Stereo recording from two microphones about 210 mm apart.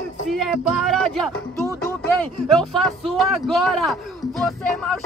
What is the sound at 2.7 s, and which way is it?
Speech, centre (ahead or behind).